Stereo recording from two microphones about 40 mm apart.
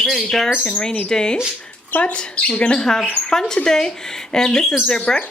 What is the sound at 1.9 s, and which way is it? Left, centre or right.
Speech, left.